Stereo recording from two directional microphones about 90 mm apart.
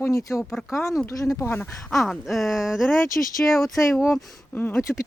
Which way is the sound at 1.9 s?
Centre (ahead or behind).